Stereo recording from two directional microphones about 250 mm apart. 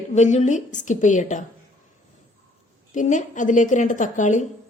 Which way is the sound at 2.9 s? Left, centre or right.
Left.